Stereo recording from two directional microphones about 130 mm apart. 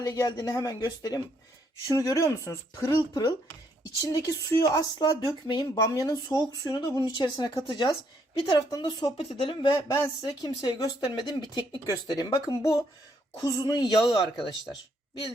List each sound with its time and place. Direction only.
0.0 s speech: 30° left (ahead or behind)
9.9 s speech: 30° left (ahead or behind)